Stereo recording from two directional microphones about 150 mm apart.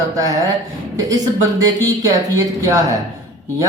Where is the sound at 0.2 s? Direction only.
25° right (ahead or behind).